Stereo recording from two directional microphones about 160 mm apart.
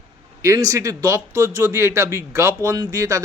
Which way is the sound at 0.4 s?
20° right (ahead or behind).